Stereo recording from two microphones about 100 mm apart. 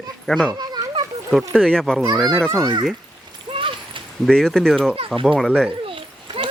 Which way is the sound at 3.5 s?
60° right (ahead or behind).